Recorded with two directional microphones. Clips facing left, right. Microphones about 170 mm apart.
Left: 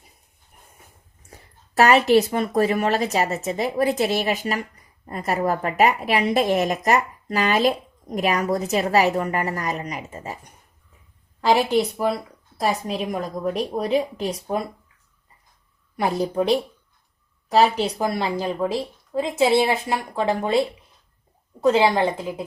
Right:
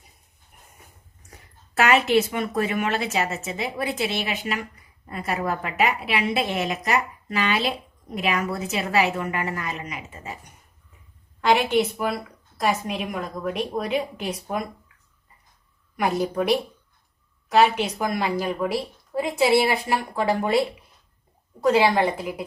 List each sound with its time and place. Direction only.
1.3 s speech: 35° left (ahead or behind)
11.3 s speech: 35° left (ahead or behind)
16.0 s speech: 35° left (ahead or behind)
21.6 s speech: 25° left (ahead or behind)